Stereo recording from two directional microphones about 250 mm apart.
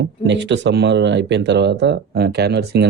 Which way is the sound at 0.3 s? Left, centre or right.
Right.